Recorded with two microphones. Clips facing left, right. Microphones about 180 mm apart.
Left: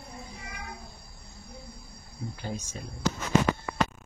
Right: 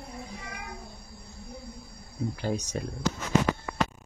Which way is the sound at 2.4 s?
75° right (ahead or behind).